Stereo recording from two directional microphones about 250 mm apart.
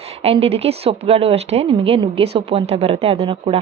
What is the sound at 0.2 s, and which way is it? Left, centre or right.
Speech, right.